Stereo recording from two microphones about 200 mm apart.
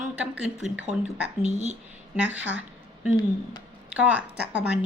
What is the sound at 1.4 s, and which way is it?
Speech, 35° right (ahead or behind).